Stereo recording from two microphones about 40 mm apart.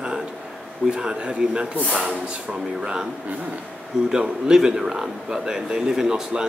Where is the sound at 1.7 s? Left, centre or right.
Right.